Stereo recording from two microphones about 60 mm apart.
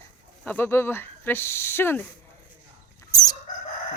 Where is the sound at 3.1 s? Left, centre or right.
Left.